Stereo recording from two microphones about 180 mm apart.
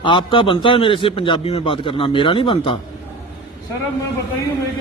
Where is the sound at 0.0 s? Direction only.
25° left (ahead or behind).